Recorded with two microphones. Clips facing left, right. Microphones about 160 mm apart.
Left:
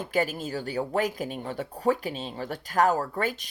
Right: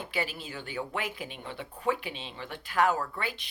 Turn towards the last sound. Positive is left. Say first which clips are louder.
# left 6 dB
turn(degrees=45)  # may be behind; listen again after turning